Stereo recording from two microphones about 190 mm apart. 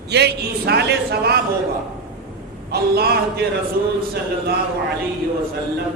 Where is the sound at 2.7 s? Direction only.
55° right (ahead or behind).